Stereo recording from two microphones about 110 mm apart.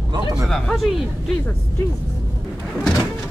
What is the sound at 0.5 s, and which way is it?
Speech, 5° left (ahead or behind).